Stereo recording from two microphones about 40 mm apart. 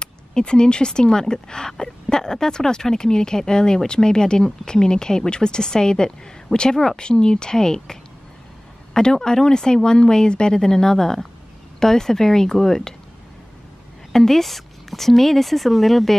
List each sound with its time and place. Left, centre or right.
0.0 s speech: left
14.1 s a woman's voice: centre